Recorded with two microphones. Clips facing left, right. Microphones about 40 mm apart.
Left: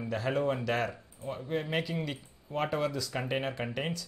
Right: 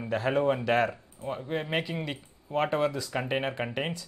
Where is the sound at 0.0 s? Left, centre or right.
Right.